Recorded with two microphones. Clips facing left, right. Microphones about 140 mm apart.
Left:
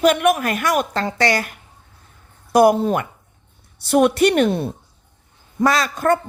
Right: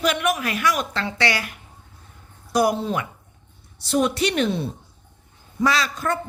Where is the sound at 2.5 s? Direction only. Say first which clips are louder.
Left 7 dB; 55° left (ahead or behind).